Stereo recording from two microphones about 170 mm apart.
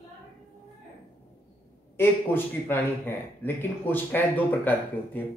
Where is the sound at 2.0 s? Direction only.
10° left (ahead or behind).